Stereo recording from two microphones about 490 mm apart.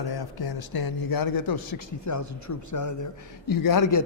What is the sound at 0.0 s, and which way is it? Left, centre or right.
A man's voice, left.